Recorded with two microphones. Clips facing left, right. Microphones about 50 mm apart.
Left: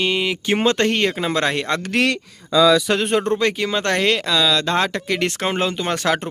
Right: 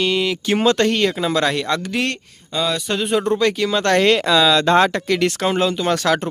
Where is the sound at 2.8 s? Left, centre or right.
Left.